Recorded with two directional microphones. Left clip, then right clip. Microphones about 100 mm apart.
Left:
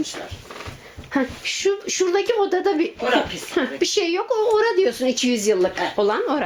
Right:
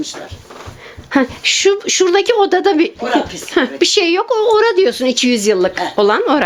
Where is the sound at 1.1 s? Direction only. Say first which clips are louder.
Right 10 dB; 70° right (ahead or behind).